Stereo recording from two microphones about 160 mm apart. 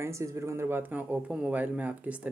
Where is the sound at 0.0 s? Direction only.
20° right (ahead or behind).